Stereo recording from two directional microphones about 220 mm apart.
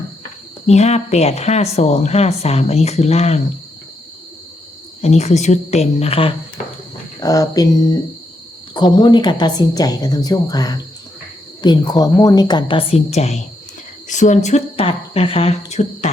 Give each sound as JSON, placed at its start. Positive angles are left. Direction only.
{"t": 0.7, "sound": "speech", "side_deg": 30}
{"t": 5.0, "sound": "speech", "side_deg": 30}